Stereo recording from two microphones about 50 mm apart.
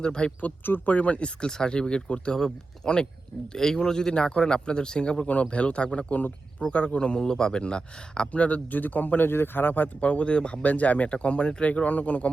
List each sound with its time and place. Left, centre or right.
0.0 s speech: centre
0.4 s a man's voice: left
6.6 s a man's voice: left
10.0 s a man's voice: left